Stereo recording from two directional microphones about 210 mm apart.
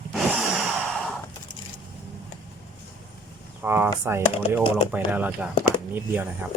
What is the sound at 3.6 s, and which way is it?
Chop, 10° right (ahead or behind).